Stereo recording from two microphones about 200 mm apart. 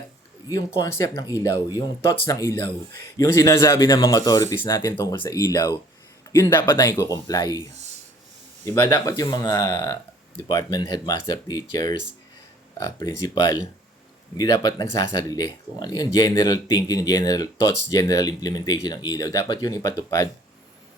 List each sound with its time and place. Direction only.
0.4 s speech: 15° left (ahead or behind)
8.6 s speech: 15° left (ahead or behind)